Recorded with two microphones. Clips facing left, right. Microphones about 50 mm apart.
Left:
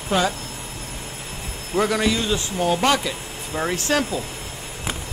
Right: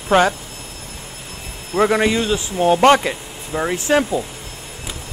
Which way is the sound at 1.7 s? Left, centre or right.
Right.